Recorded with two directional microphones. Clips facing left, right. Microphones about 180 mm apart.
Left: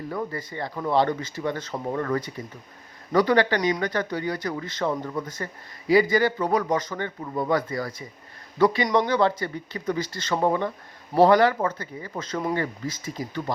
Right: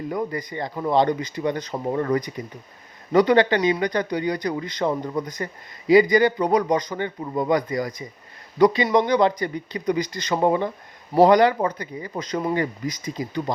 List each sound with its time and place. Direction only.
0.1 s speech: 15° right (ahead or behind)